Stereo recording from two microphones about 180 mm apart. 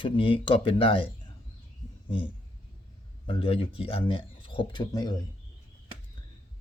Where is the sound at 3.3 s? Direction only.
30° left (ahead or behind).